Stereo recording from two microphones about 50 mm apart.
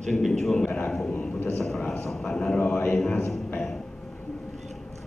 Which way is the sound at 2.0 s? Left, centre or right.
Centre.